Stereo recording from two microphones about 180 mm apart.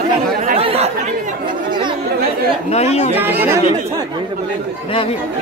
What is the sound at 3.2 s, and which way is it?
Speech, 10° right (ahead or behind).